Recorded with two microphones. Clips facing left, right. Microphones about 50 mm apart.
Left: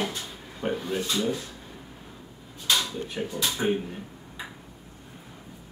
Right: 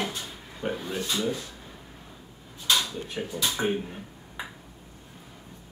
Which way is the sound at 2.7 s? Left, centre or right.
Centre.